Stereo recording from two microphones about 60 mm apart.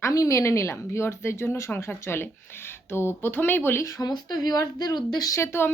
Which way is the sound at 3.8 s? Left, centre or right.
Left.